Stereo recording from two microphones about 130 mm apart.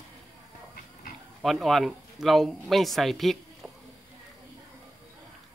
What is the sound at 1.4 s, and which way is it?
Speech, centre (ahead or behind).